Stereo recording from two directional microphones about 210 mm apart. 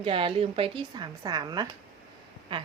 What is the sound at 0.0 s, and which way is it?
A woman's voice, 25° right (ahead or behind).